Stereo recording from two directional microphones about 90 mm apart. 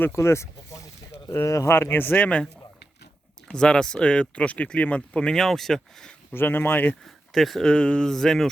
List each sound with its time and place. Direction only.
0.0 s speech: 30° left (ahead or behind)
3.5 s speech: 10° left (ahead or behind)
6.3 s speech: 25° left (ahead or behind)
7.0 s speech: centre (ahead or behind)